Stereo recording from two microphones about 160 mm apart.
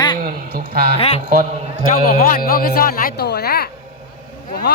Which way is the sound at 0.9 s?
40° left (ahead or behind).